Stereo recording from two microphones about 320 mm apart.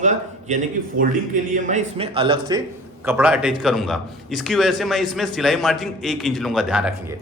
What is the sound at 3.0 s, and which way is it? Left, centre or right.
A man's voice, centre.